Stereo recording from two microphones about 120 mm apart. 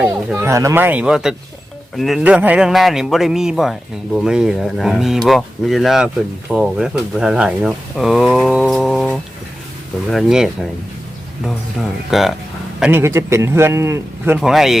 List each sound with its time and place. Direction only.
0.3 s speech: 20° right (ahead or behind); by 2.2 s centre (ahead or behind)
2.2 s speech: 10° right (ahead or behind)
12.9 s speech: 20° right (ahead or behind)
14.3 s speech: 5° right (ahead or behind)